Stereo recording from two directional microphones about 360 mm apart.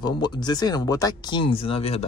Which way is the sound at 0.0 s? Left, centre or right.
Centre.